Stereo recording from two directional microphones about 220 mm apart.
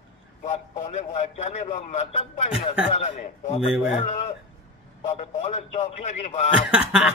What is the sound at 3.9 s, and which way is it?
A man's voice, 35° left (ahead or behind).